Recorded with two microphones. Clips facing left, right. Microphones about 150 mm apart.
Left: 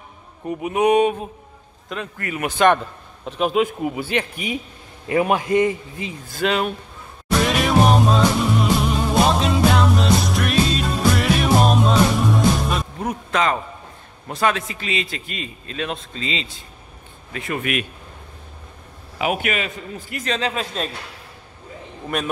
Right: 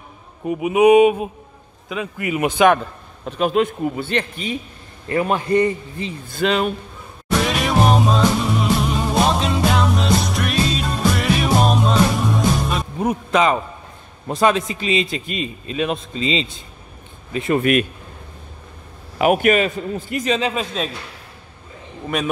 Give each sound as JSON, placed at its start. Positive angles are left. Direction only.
{"t": 0.5, "sound": "a sound", "side_deg": -5}
{"t": 1.9, "sound": "a man's voice", "side_deg": -5}
{"t": 2.2, "sound": "a sound", "side_deg": -15}
{"t": 2.6, "sound": "a man's voice", "side_deg": 0}
{"t": 7.4, "sound": "music", "side_deg": 0}
{"t": 13.0, "sound": "a sound", "side_deg": -10}
{"t": 14.2, "sound": "a man's voice", "side_deg": -20}
{"t": 19.1, "sound": "a man's voice", "side_deg": -50}
{"t": 20.0, "sound": "a man's voice", "side_deg": -25}
{"t": 20.2, "sound": "a man's voice", "side_deg": -5}